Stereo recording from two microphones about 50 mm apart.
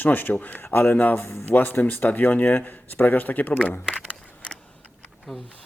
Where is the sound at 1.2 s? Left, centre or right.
Left.